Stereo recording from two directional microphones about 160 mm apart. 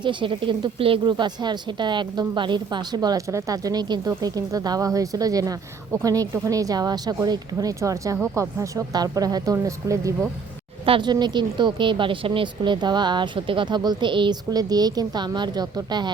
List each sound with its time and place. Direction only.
0.0 s speech: 30° right (ahead or behind)
10.8 s speech: 30° right (ahead or behind)